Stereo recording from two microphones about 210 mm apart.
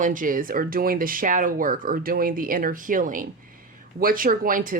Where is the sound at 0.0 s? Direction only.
40° right (ahead or behind).